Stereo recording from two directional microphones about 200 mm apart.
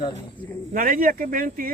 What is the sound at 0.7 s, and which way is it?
Speech, 45° right (ahead or behind).